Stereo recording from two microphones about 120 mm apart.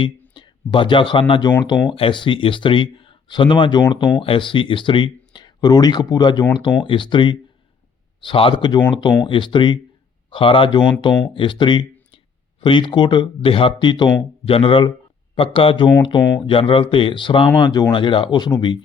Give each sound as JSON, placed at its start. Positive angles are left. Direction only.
{"t": 0.3, "sound": "speech", "side_deg": 45}